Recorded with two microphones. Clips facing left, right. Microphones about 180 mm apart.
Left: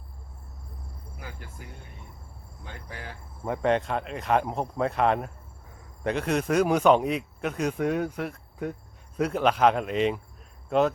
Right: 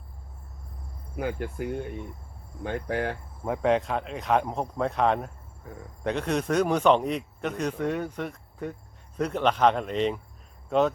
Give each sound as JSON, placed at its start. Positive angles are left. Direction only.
{"t": 1.1, "sound": "cricket", "side_deg": -60}
{"t": 2.6, "sound": "speech", "side_deg": -65}
{"t": 3.4, "sound": "speech", "side_deg": 0}